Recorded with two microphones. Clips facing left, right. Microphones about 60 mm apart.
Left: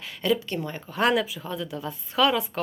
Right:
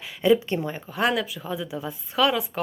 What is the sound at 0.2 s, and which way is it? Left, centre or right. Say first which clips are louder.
Speech: right 5 dB; centre.